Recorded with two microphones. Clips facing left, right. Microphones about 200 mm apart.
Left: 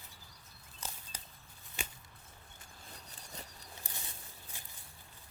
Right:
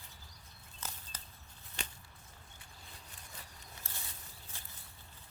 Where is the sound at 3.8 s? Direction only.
15° left (ahead or behind).